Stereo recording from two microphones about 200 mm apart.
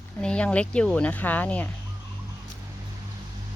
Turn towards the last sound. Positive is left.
turn(degrees=10)  # may be behind; listen again after turning